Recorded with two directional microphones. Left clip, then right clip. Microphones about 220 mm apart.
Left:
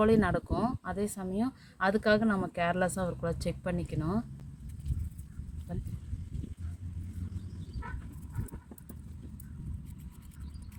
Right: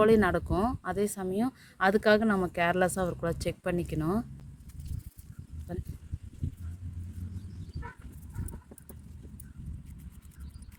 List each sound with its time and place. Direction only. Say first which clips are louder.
0.0 s speech: right 3 dB; 35° right (ahead or behind)
5.7 s speech: right 4 dB; 30° right (ahead or behind)